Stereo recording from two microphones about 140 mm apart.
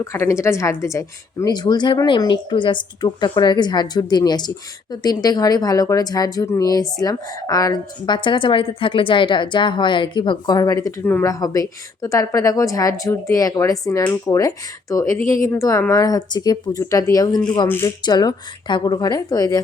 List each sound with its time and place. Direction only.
0.0 s speech: 20° left (ahead or behind)
18.0 s speech: 30° left (ahead or behind)